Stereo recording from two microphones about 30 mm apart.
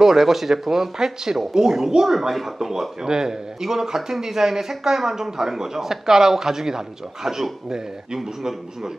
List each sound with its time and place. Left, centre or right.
0.0 s a man's voice: centre
2.0 s a man's voice: centre
8.2 s a man's voice: centre